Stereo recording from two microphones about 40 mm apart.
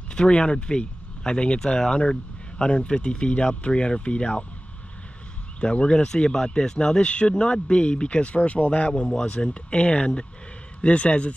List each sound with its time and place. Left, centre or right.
0.1 s speech: left
5.6 s speech: left